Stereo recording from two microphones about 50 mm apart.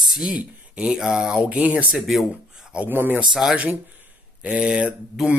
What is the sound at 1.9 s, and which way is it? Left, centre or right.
Speech, centre.